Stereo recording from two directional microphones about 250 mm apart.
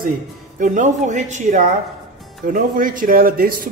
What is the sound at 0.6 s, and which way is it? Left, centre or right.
A woman's voice, right.